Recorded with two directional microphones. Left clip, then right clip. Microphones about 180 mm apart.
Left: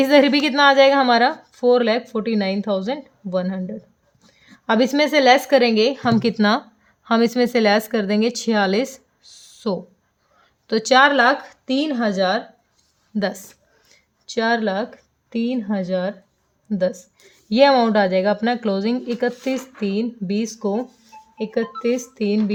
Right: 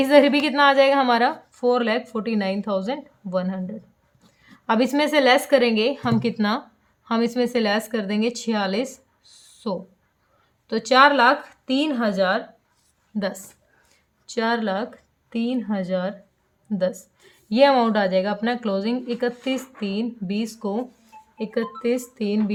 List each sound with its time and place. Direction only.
0.0 s a woman's voice: 30° left (ahead or behind)
13.1 s a woman's voice: 35° left (ahead or behind)
14.3 s a woman's voice: 15° left (ahead or behind)